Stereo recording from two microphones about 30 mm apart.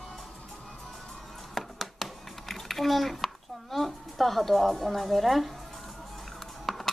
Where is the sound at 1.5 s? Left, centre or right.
Centre.